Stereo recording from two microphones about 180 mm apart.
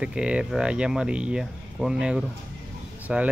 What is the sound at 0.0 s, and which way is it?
Speech, 5° right (ahead or behind).